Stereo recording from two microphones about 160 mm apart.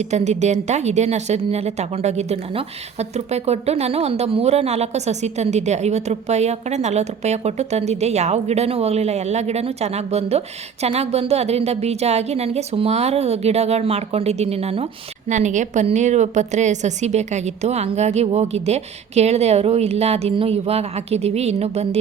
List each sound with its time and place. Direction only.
0.0 s speech: 45° right (ahead or behind)
15.3 s a woman's voice: 50° right (ahead or behind)